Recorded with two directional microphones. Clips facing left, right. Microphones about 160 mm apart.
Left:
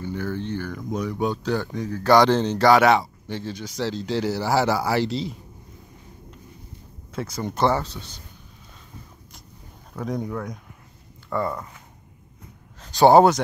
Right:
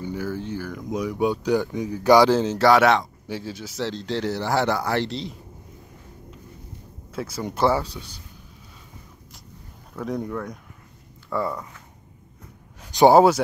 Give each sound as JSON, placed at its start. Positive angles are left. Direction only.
{"t": 0.0, "sound": "speech", "side_deg": -10}
{"t": 7.1, "sound": "speech", "side_deg": -5}
{"t": 9.9, "sound": "speech", "side_deg": 0}
{"t": 12.8, "sound": "a sound", "side_deg": -15}
{"t": 13.1, "sound": "speech", "side_deg": -5}